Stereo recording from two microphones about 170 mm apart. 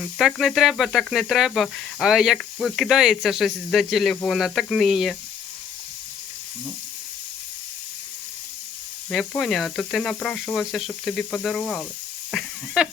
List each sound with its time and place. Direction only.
0.0 s speech: centre (ahead or behind)
9.0 s speech: 5° left (ahead or behind)